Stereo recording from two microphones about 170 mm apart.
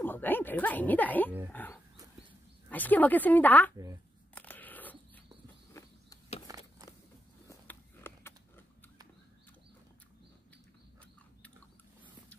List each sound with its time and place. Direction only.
0.0 s speech: 10° left (ahead or behind)
4.4 s a sound: 10° left (ahead or behind)
6.4 s biting: 20° right (ahead or behind)
7.4 s biting: 15° left (ahead or behind)